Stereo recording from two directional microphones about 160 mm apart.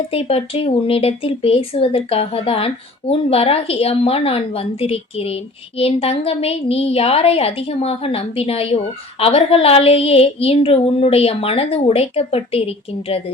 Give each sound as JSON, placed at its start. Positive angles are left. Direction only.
{"t": 0.1, "sound": "speech", "side_deg": 40}